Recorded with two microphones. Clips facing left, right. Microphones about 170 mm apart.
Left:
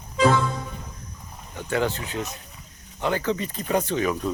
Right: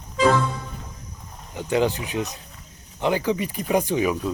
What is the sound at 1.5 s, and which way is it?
Speech, 15° right (ahead or behind).